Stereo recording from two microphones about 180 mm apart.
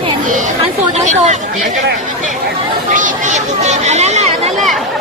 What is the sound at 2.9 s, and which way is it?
Speech, 45° right (ahead or behind).